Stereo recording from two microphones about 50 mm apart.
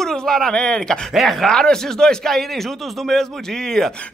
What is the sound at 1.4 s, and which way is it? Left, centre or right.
Speech, centre.